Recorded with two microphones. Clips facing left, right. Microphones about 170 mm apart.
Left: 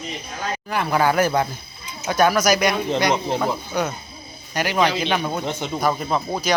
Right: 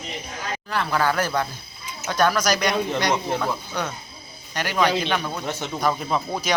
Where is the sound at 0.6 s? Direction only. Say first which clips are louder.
Left 3 dB; 15° left (ahead or behind).